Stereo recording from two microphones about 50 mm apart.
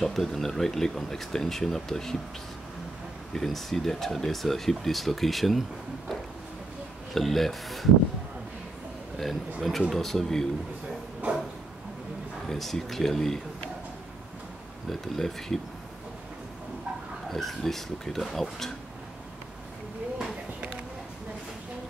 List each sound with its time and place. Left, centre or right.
0.0 s speech: centre
3.3 s speech: centre
7.2 s speech: centre
9.7 s speech: centre
11.2 s a sound: right
12.4 s speech: centre
14.9 s speech: centre
17.3 s speech: centre